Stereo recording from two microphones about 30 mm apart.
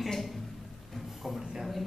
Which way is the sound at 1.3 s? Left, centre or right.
Centre.